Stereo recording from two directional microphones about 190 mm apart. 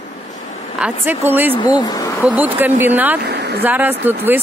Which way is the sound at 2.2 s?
10° right (ahead or behind).